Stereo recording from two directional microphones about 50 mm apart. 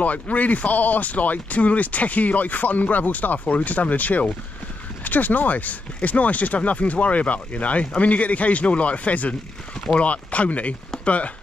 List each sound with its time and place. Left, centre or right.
0.0 s speech: left